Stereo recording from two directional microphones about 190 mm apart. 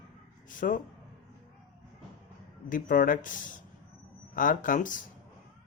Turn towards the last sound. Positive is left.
turn(degrees=45)  # may be behind; listen again after turning